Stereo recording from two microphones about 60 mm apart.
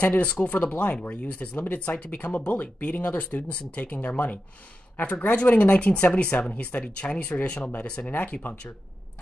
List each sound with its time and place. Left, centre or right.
0.0 s speech: left